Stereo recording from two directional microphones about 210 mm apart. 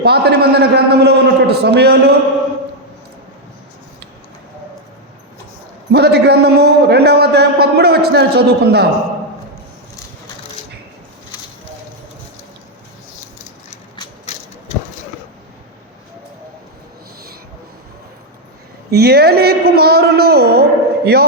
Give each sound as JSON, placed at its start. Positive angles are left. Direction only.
{"t": 0.0, "sound": "a man's voice", "side_deg": -50}
{"t": 5.9, "sound": "a man's voice", "side_deg": -50}
{"t": 13.7, "sound": "a sound", "side_deg": 25}
{"t": 18.9, "sound": "a man's voice", "side_deg": -50}